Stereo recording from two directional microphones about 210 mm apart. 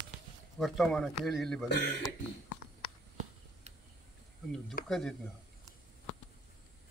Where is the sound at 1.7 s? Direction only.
55° left (ahead or behind).